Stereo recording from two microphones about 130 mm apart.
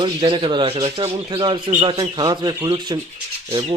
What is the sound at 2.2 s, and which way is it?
Speech, 30° right (ahead or behind).